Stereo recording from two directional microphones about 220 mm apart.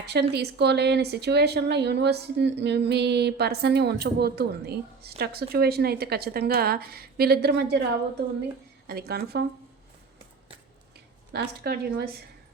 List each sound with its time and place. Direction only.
0.0 s a woman's voice: 50° right (ahead or behind)
8.9 s a woman's voice: 45° right (ahead or behind)
11.3 s a woman's voice: 45° right (ahead or behind)